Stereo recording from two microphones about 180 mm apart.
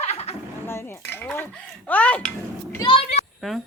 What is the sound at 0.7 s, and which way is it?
Speech, 15° left (ahead or behind).